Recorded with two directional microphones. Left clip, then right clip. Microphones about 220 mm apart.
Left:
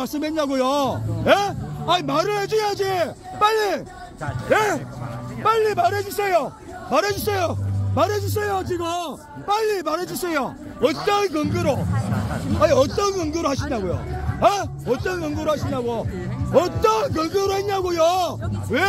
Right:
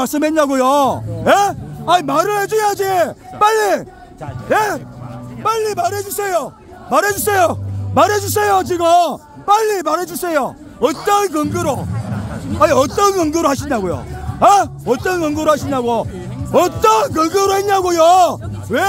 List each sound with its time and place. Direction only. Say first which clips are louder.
0.0 s a man's voice: right 9 dB; 40° right (ahead or behind)
4.5 s a man's voice: right 4 dB; 20° right (ahead or behind)
6.9 s a man's voice: right 6 dB; 30° right (ahead or behind)
12.1 s a sound: even; 40° left (ahead or behind)
12.5 s a man's voice: right 5 dB; 40° right (ahead or behind)